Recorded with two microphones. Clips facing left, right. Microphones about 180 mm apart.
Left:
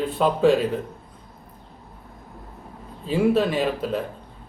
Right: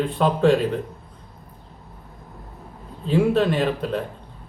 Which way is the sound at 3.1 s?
5° left (ahead or behind).